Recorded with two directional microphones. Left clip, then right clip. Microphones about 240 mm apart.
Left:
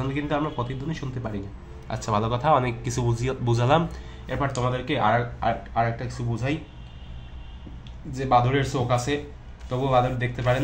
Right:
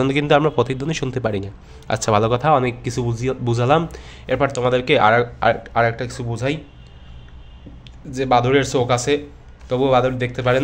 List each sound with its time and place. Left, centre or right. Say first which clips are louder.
0.0 s speech: right 11 dB; right
4.1 s speech: right 11 dB; right
8.2 s speech: right 5 dB; right